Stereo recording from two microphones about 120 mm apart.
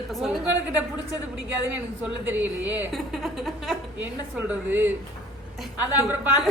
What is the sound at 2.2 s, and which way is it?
Speech, 15° right (ahead or behind).